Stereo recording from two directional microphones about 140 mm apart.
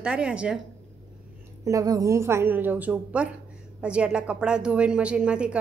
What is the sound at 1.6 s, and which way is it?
A woman's voice, 25° right (ahead or behind).